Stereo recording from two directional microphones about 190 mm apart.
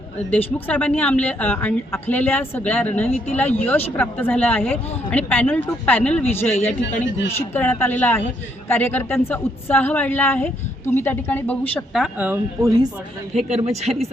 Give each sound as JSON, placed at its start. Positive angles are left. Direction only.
{"t": 0.3, "sound": "speech", "side_deg": 10}
{"t": 12.0, "sound": "speech", "side_deg": -10}
{"t": 13.3, "sound": "speech", "side_deg": -35}